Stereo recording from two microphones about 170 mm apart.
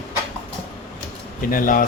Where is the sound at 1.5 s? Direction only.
55° left (ahead or behind).